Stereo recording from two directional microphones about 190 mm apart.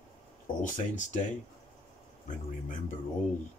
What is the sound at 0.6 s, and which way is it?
Speech, 40° left (ahead or behind).